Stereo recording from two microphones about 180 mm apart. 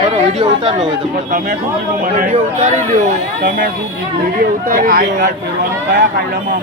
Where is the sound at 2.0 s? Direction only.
45° right (ahead or behind).